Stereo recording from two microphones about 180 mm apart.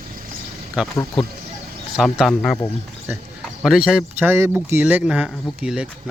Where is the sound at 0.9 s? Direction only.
20° left (ahead or behind).